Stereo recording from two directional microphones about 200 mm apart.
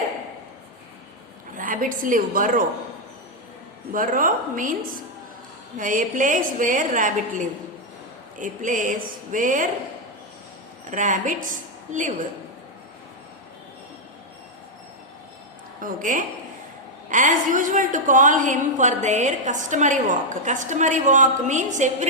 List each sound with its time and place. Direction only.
1.5 s a woman's voice: 40° right (ahead or behind)
3.9 s a woman's voice: 45° right (ahead or behind)
5.7 s a woman's voice: 40° right (ahead or behind)
10.8 s a woman's voice: 40° right (ahead or behind)
15.8 s a woman's voice: 40° right (ahead or behind)